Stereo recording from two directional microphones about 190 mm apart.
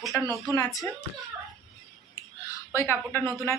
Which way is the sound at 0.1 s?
15° left (ahead or behind).